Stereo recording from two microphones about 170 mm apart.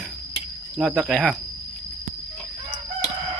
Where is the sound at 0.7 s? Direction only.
Centre (ahead or behind).